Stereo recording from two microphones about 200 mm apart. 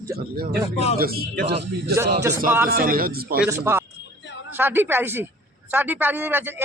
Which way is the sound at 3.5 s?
15° right (ahead or behind).